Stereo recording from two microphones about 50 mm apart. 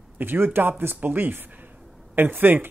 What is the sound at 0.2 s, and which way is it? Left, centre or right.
A man's voice, right.